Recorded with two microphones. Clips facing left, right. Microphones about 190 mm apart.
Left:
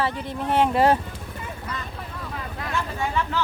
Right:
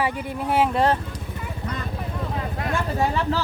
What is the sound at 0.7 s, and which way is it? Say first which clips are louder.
Speech: left 2 dB; 10° left (ahead or behind).